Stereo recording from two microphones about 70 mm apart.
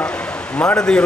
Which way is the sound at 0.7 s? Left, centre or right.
Centre.